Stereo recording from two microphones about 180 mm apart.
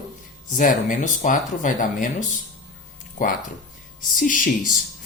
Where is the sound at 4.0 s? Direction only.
50° left (ahead or behind).